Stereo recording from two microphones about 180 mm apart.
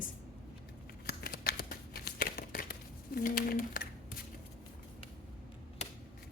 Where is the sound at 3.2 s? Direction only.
55° left (ahead or behind).